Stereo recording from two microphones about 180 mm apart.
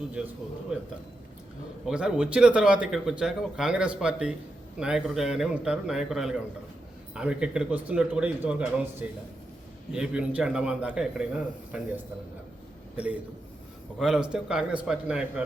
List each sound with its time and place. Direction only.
0.7 s speech: 5° right (ahead or behind)
14.0 s a man's voice: 5° right (ahead or behind)